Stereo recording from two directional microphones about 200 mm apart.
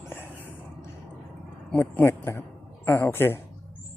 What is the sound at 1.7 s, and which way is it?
Speech, 10° left (ahead or behind).